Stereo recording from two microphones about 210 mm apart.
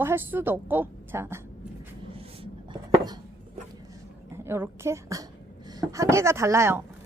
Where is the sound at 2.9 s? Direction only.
20° right (ahead or behind).